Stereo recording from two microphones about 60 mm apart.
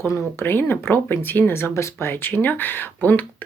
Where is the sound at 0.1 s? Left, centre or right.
Left.